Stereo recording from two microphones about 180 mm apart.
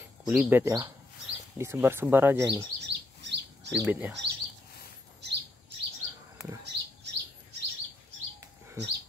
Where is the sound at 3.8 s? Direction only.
10° right (ahead or behind).